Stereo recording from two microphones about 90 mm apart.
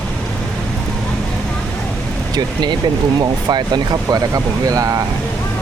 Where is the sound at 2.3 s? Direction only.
50° right (ahead or behind).